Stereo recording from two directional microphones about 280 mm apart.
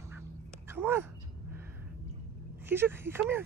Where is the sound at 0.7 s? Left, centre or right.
Centre.